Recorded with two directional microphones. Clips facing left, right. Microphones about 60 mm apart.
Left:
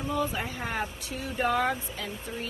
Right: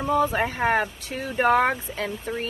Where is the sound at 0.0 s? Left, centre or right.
Right.